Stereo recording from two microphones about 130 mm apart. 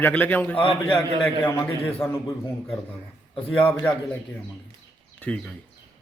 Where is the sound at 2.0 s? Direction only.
20° left (ahead or behind).